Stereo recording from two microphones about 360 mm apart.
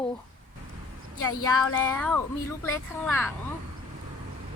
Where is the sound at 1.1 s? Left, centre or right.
Left.